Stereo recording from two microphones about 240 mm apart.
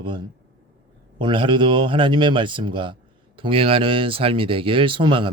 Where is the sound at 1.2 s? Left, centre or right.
Centre.